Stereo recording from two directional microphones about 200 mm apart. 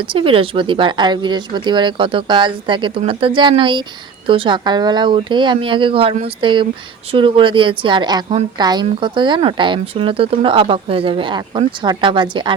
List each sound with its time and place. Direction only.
0.0 s speech: 25° right (ahead or behind)